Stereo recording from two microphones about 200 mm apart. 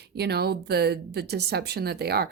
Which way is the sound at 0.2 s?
55° right (ahead or behind).